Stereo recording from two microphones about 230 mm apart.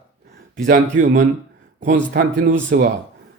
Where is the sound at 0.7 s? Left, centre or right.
Right.